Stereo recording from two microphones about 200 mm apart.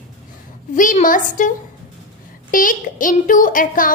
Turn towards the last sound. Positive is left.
turn(degrees=40)  # may be behind; listen again after turning